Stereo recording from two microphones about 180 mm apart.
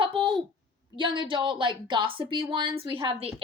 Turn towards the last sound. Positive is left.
turn(degrees=-30)  # may be behind; listen again after turning